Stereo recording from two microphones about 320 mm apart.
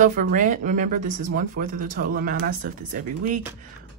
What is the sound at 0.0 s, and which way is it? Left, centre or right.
Speech, right.